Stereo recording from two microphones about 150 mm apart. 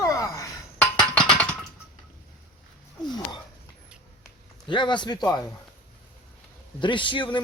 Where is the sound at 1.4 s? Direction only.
5° left (ahead or behind).